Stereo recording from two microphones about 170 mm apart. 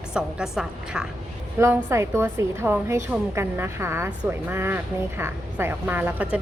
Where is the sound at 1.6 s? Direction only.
15° right (ahead or behind).